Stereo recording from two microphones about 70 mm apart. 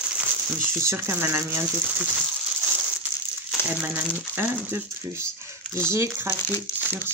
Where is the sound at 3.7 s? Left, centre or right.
Right.